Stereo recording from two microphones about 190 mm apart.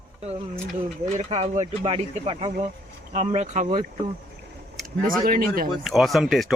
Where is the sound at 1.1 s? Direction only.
35° right (ahead or behind).